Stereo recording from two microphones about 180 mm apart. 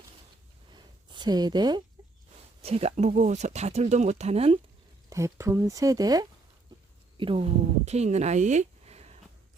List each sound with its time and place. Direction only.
0.7 s a sound: 25° right (ahead or behind)
2.6 s speech: 35° right (ahead or behind)
5.0 s speech: 15° right (ahead or behind)
7.2 s speech: 30° right (ahead or behind)